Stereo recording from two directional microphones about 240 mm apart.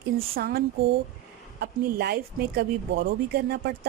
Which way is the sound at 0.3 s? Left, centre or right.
Right.